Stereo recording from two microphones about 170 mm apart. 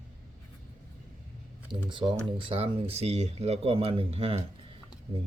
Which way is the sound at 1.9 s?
30° right (ahead or behind).